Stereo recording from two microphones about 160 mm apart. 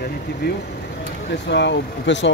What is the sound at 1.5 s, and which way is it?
Speech, 90° left.